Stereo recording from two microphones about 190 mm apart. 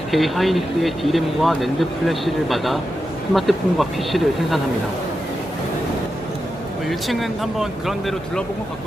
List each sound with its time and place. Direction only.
0.1 s speech: centre (ahead or behind)
6.8 s speech: centre (ahead or behind)